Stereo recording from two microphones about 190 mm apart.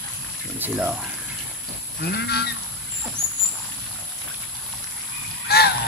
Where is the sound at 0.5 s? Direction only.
10° right (ahead or behind).